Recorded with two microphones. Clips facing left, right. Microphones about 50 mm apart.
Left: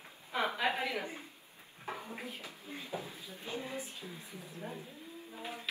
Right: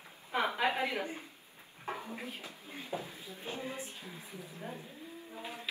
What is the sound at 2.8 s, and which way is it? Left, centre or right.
A woman's voice, right.